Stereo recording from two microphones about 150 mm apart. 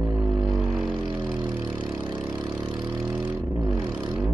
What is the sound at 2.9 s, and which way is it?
Vehicle, 15° right (ahead or behind).